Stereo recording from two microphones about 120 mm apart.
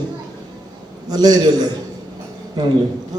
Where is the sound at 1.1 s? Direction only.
35° right (ahead or behind).